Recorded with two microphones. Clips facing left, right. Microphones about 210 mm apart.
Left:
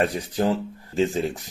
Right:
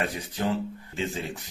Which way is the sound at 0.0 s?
40° left (ahead or behind).